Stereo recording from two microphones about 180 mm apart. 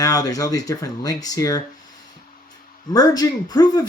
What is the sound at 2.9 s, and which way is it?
Speech, 20° left (ahead or behind).